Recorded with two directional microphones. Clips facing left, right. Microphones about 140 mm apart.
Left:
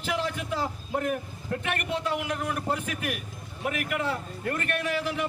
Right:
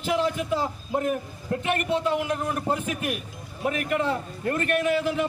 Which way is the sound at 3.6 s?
30° right (ahead or behind).